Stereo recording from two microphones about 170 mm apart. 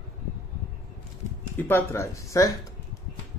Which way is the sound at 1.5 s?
10° left (ahead or behind).